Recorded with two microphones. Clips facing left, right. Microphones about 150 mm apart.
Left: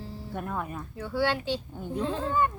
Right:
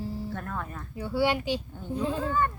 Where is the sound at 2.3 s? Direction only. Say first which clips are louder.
Left 4 dB; 15° left (ahead or behind).